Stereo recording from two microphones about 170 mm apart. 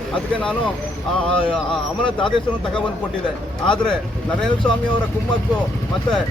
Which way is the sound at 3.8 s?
5° left (ahead or behind).